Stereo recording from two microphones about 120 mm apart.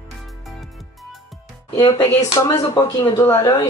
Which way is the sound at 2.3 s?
25° left (ahead or behind).